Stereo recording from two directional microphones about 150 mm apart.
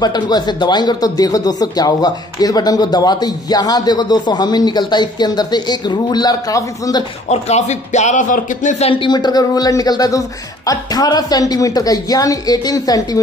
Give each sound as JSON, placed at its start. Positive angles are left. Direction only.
{"t": 0.0, "sound": "speech", "side_deg": 30}
{"t": 7.2, "sound": "speech", "side_deg": 50}